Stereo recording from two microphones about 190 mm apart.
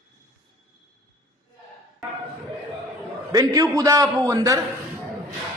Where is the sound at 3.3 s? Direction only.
20° right (ahead or behind).